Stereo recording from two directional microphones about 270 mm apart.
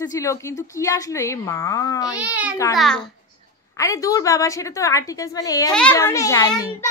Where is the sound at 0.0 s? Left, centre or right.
Centre.